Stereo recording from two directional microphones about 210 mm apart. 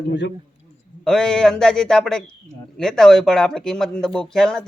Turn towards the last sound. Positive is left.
turn(degrees=0)  # may be behind; listen again after turning